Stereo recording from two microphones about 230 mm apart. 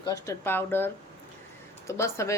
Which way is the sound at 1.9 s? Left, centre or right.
Centre.